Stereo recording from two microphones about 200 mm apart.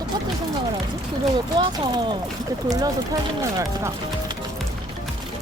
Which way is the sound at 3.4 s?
15° right (ahead or behind).